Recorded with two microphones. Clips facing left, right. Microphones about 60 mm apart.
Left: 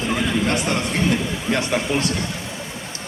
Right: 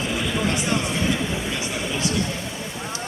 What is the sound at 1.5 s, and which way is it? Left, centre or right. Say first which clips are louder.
Speech: left 6 dB; left.